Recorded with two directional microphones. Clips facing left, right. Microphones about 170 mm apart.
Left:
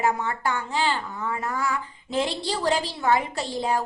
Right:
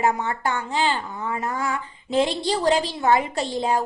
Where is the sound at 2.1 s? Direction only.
20° right (ahead or behind).